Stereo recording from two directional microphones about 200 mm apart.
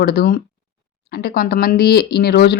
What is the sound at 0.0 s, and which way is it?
Speech, 50° left (ahead or behind).